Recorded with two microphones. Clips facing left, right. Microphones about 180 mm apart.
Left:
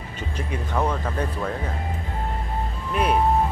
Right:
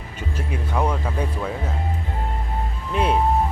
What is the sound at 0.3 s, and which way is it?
Speech, 10° right (ahead or behind).